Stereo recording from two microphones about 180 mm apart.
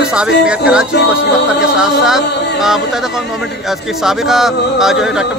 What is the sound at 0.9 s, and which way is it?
Music, 70° left (ahead or behind).